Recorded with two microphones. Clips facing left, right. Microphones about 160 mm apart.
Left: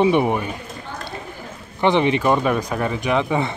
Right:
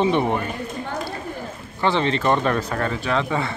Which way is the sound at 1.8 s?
15° left (ahead or behind).